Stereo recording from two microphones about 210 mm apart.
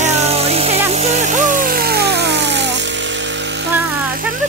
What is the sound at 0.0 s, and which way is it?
Music, 30° right (ahead or behind).